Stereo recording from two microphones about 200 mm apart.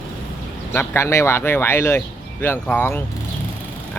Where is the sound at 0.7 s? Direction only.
15° left (ahead or behind).